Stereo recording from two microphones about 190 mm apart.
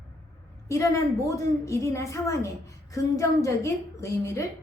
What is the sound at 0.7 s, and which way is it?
A woman's voice, 15° left (ahead or behind).